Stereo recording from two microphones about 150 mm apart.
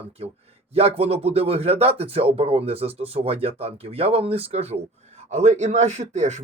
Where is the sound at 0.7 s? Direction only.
40° right (ahead or behind).